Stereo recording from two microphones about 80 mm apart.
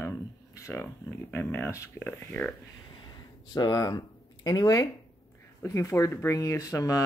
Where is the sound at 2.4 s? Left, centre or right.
Centre.